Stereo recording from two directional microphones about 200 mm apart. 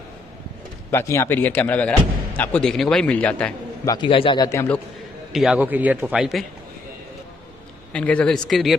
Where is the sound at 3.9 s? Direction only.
25° left (ahead or behind).